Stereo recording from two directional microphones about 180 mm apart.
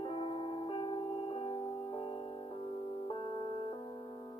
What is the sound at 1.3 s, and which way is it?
Music, 25° left (ahead or behind).